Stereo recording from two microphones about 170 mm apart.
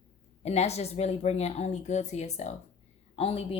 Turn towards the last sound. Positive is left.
turn(degrees=35)  # may be behind; listen again after turning